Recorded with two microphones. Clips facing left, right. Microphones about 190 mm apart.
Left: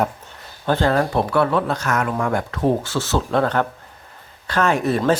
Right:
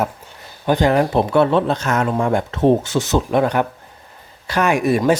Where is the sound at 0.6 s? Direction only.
15° right (ahead or behind).